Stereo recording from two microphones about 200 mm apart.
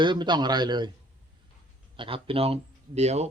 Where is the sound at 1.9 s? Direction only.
25° right (ahead or behind).